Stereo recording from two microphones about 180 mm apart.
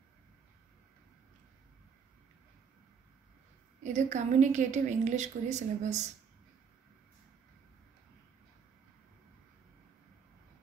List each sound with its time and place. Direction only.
3.8 s a woman's voice: 40° right (ahead or behind)